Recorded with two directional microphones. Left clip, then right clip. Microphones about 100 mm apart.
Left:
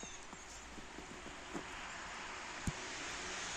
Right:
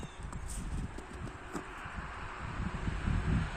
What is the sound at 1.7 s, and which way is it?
Wind, 40° left (ahead or behind).